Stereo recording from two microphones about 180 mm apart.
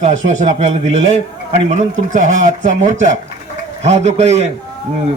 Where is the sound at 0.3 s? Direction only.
40° right (ahead or behind).